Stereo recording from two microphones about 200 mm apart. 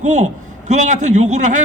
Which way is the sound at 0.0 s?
35° right (ahead or behind).